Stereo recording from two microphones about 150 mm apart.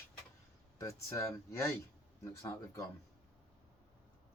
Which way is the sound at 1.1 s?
20° left (ahead or behind).